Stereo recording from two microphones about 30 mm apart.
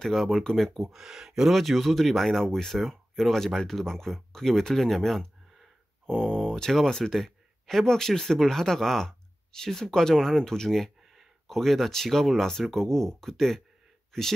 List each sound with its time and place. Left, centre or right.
0.0 s speech: centre
0.9 s speech: centre
1.5 s speech: centre
6.0 s speech: centre
7.2 s a sound: centre
7.8 s speech: centre